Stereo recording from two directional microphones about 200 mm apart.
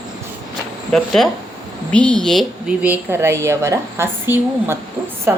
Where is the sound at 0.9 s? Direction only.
Centre (ahead or behind).